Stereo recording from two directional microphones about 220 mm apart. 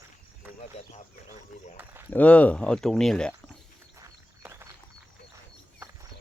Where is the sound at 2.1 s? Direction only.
5° left (ahead or behind).